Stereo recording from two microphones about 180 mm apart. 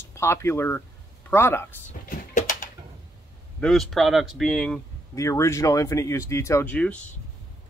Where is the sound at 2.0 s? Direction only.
50° left (ahead or behind).